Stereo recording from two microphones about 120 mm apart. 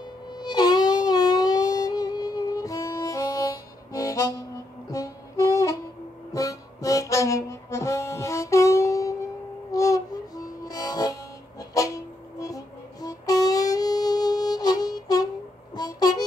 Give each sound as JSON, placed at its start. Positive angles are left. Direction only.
{"t": 0.4, "sound": "music", "side_deg": 35}
{"t": 6.3, "sound": "harmonica", "side_deg": 30}
{"t": 11.7, "sound": "music", "side_deg": 30}
{"t": 15.7, "sound": "a sound", "side_deg": 35}